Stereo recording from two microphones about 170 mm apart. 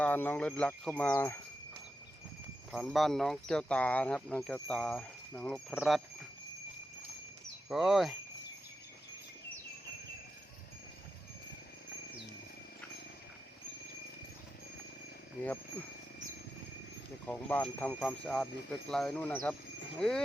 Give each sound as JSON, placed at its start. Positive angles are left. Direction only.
{"t": 0.0, "sound": "speech", "side_deg": 10}
{"t": 2.7, "sound": "speech", "side_deg": 0}
{"t": 7.7, "sound": "speech", "side_deg": 0}
{"t": 17.2, "sound": "speech", "side_deg": 10}